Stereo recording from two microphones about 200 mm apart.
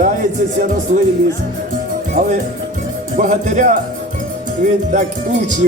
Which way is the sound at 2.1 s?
40° right (ahead or behind).